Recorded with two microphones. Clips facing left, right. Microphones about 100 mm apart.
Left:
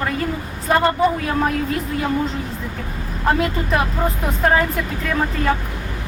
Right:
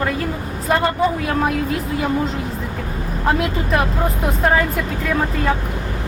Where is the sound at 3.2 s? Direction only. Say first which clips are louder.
Even; centre (ahead or behind).